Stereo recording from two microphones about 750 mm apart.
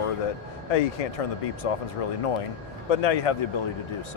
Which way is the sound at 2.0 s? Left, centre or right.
Left.